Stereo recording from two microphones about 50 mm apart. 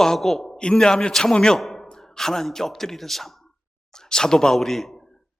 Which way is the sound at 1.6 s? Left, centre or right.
Centre.